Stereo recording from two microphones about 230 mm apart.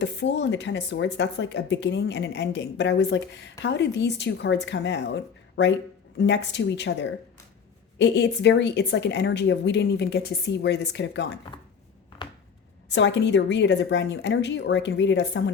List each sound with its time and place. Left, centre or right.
0.0 s a woman's voice: left
12.9 s a woman's voice: left